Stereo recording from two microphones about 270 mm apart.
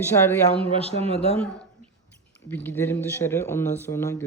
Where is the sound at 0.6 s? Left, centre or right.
Right.